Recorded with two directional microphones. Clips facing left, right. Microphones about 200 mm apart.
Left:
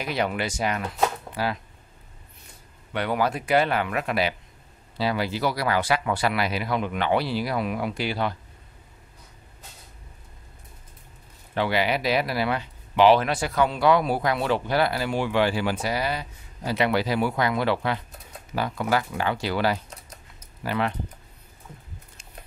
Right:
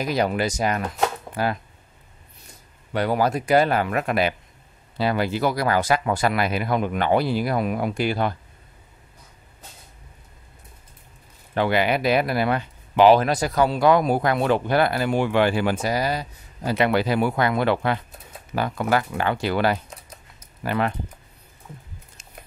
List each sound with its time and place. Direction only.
0.0 s speech: 40° right (ahead or behind)
2.9 s speech: 40° right (ahead or behind)
11.5 s speech: 50° right (ahead or behind)